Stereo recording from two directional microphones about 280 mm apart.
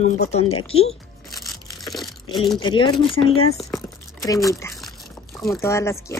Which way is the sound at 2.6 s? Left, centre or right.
Centre.